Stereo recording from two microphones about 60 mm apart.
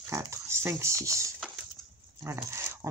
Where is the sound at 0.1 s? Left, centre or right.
Right.